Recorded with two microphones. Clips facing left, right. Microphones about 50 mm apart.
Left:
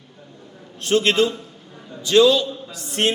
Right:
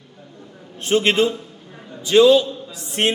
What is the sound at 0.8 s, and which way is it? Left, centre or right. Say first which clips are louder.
A man's voice: right 1 dB; right.